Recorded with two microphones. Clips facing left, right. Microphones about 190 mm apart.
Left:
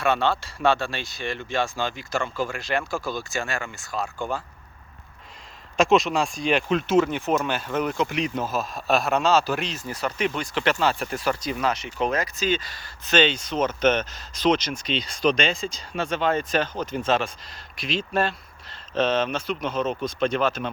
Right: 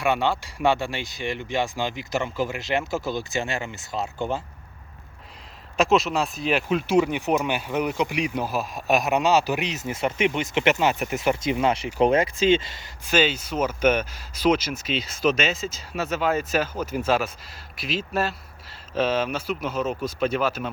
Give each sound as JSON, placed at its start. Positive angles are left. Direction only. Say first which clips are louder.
{"t": 0.0, "sound": "speech", "louder": "even", "side_deg": -15}
{"t": 5.7, "sound": "speech", "louder": "left 1 dB", "side_deg": -5}
{"t": 13.1, "sound": "speech", "louder": "left 1 dB", "side_deg": -5}